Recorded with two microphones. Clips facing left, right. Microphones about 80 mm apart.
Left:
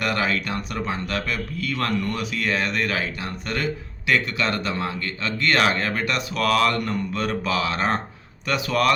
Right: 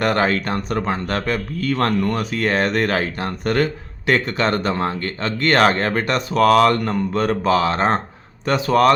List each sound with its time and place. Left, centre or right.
0.0 s speech: right